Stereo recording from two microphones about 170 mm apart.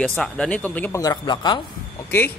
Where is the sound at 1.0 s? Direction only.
25° left (ahead or behind).